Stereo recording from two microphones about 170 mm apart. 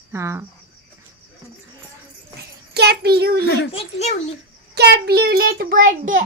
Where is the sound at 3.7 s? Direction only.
35° left (ahead or behind).